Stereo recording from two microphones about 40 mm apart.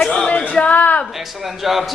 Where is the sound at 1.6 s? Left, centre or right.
Centre.